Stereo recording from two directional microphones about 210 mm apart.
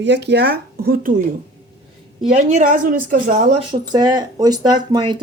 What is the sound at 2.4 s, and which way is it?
Speech, 35° right (ahead or behind).